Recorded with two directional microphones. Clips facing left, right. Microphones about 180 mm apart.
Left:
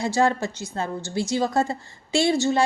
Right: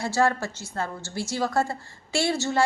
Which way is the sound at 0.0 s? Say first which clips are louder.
Left 2 dB; 20° left (ahead or behind).